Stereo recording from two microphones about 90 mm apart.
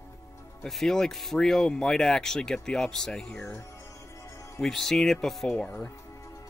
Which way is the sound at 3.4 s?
30° left (ahead or behind).